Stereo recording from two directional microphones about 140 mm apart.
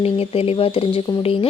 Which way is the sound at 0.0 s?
45° left (ahead or behind).